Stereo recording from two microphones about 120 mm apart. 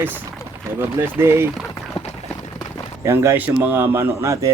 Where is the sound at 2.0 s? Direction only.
60° left (ahead or behind).